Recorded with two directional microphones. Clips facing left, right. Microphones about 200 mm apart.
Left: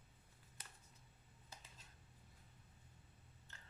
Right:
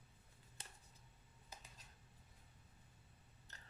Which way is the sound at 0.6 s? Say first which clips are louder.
Right 2 dB; 30° right (ahead or behind).